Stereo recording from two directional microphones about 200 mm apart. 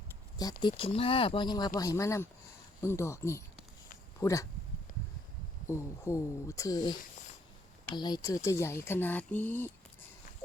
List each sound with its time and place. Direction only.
0.6 s speech: 25° left (ahead or behind)
4.9 s a sound: 40° left (ahead or behind)
5.6 s speech: 15° left (ahead or behind)
7.9 s speech: 20° left (ahead or behind)